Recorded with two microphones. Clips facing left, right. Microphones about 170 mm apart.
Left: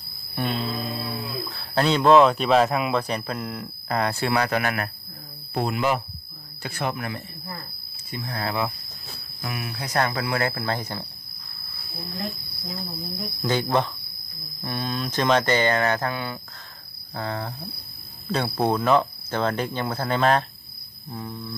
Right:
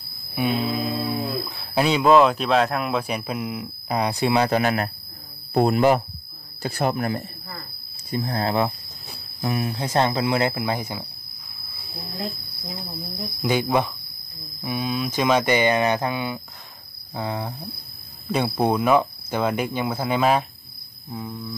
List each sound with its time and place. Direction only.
0.3 s a sound: 10° right (ahead or behind)
1.8 s speech: 10° right (ahead or behind); by 4.9 s 25° right (ahead or behind)
5.5 s speech: 40° right (ahead or behind); by 11.1 s 10° right (ahead or behind)
12.2 s speech: 20° right (ahead or behind)
13.5 s speech: 10° right (ahead or behind)
21.1 s a sound: centre (ahead or behind)